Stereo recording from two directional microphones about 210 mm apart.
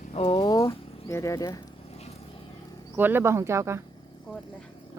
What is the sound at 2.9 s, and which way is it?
Speech, 10° right (ahead or behind).